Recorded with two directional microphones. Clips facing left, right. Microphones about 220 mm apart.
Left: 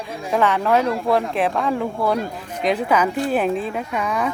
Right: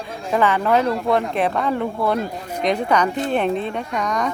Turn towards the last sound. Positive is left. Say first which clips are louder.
# even
turn(degrees=5)  # may be behind; listen again after turning